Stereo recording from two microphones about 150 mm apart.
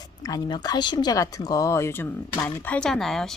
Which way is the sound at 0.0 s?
25° left (ahead or behind).